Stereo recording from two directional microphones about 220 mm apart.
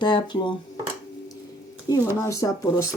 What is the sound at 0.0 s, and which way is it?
Speech, 20° left (ahead or behind).